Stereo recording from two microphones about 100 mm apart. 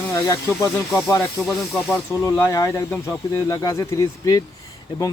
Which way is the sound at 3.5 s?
30° left (ahead or behind).